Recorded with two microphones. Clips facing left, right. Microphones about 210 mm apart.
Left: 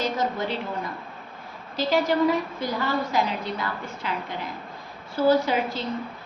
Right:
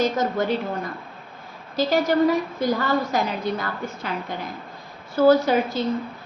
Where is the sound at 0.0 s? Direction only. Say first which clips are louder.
Right 4 dB; 45° right (ahead or behind).